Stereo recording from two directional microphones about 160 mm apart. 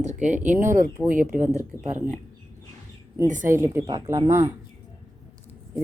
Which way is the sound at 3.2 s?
50° right (ahead or behind).